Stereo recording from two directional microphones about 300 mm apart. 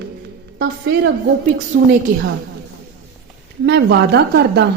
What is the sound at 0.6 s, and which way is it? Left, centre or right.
A woman's voice, right.